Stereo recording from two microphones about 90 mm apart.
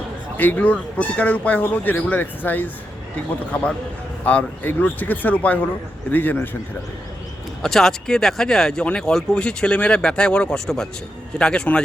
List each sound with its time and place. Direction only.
0.3 s speech: 20° left (ahead or behind)
7.6 s speech: 5° left (ahead or behind)